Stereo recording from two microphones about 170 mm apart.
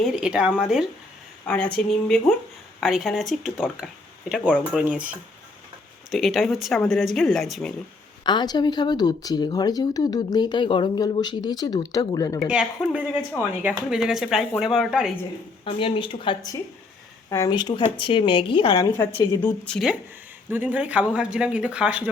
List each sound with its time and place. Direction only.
0.0 s speech: 5° right (ahead or behind)
1.5 s speech: 5° left (ahead or behind)
8.2 s speech: 25° left (ahead or behind)
12.5 s speech: 5° right (ahead or behind)
15.6 s speech: 30° left (ahead or behind)
17.2 s speech: 20° left (ahead or behind)
18.9 s a woman's voice: 15° left (ahead or behind)
20.5 s speech: 10° right (ahead or behind)